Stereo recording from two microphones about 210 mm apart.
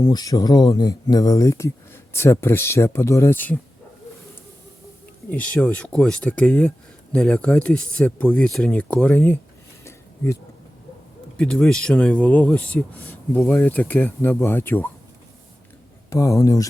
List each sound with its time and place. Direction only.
0.0 s speech: 20° left (ahead or behind)
5.3 s speech: 5° left (ahead or behind)
11.3 s speech: 5° left (ahead or behind)
16.0 s speech: 15° left (ahead or behind)